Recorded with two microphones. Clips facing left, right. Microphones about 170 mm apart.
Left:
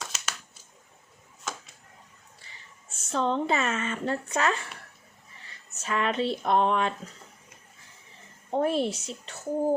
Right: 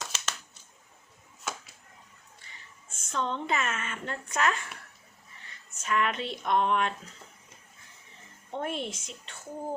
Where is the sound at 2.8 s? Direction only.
35° left (ahead or behind).